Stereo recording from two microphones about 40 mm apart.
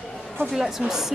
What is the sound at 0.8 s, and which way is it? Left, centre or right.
Speech, centre.